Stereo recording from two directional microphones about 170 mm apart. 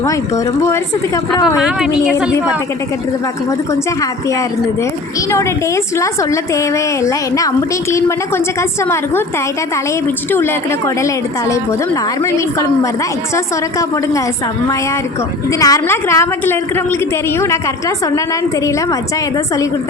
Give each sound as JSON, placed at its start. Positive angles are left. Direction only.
{"t": 0.0, "sound": "a woman's voice", "side_deg": 20}
{"t": 1.5, "sound": "a woman's voice", "side_deg": -5}
{"t": 3.7, "sound": "a woman's voice", "side_deg": 20}
{"t": 10.3, "sound": "a woman's voice", "side_deg": 15}
{"t": 15.4, "sound": "a woman's voice", "side_deg": 20}